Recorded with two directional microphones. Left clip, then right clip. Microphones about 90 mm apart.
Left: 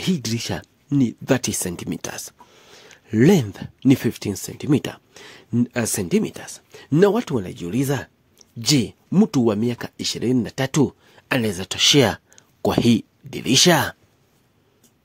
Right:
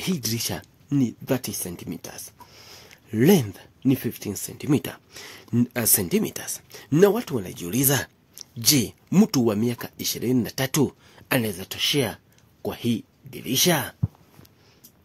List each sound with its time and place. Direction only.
0.0 s speech: 40° left (ahead or behind)
1.2 s speech: 75° left (ahead or behind)
2.9 s speech: 45° left (ahead or behind); by 4.4 s 65° left (ahead or behind)
4.5 s speech: 30° left (ahead or behind)
5.7 s speech: 30° left (ahead or behind)
7.1 s speech: 55° left (ahead or behind)
7.9 s a sound: centre (ahead or behind)
8.5 s speech: 25° left (ahead or behind)
11.5 s speech: 80° left